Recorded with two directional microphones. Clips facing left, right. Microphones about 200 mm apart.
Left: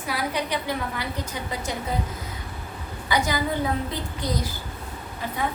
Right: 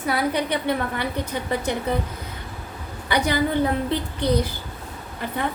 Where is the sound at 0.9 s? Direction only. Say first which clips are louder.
Right 5 dB; 60° right (ahead or behind).